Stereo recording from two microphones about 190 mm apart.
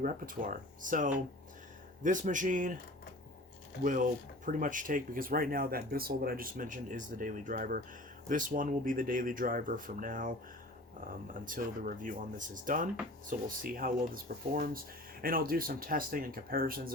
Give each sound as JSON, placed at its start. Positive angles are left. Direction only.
{"t": 0.0, "sound": "speech", "side_deg": -45}
{"t": 3.8, "sound": "speech", "side_deg": -45}
{"t": 11.4, "sound": "speech", "side_deg": -45}